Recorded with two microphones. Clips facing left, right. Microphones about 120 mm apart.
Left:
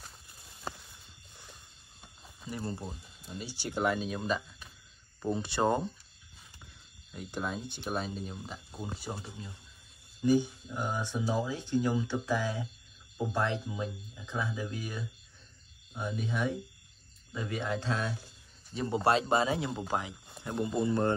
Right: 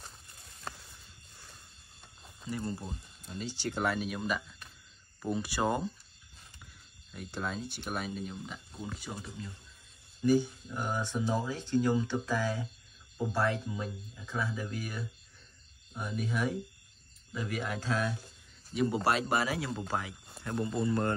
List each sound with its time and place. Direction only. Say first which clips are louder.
2.5 s speech: right 1 dB; 25° left (ahead or behind)
2.8 s speech: left 1 dB; 5° left (ahead or behind); by 4.2 s 20° left (ahead or behind)
4.4 s a sound: even; 5° left (ahead or behind)
5.2 s speech: left 2 dB; 25° left (ahead or behind)
7.1 s speech: left 1 dB; 15° left (ahead or behind)
10.2 s speech: even; 20° left (ahead or behind)